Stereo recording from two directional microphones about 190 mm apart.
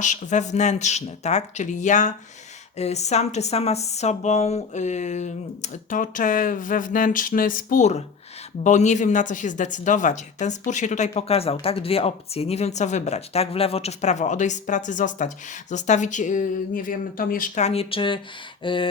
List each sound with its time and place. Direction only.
0.0 s speech: 40° left (ahead or behind)